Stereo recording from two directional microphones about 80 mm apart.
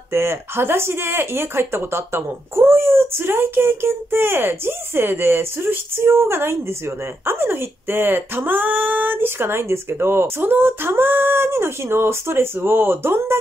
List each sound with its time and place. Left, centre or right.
0.1 s speech: right